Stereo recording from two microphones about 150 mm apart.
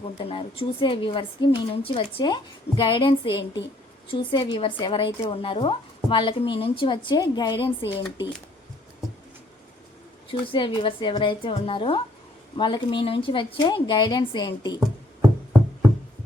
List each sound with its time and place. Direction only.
0.2 s a woman's voice: 40° left (ahead or behind)
10.4 s a woman's voice: 30° left (ahead or behind)